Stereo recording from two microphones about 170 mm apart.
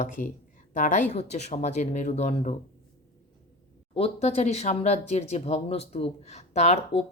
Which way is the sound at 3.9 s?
35° left (ahead or behind).